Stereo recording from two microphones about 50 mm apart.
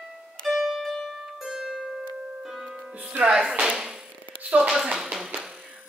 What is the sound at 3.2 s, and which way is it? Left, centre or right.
Speech, centre.